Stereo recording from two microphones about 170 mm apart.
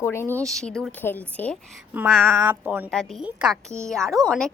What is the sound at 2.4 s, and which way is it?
Speech, 10° right (ahead or behind).